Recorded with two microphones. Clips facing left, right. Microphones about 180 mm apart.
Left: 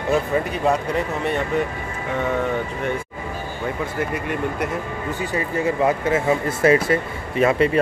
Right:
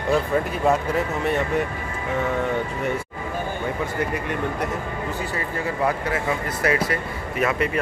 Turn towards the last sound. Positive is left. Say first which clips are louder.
# left 5 dB
turn(degrees=25)  # may be behind; listen again after turning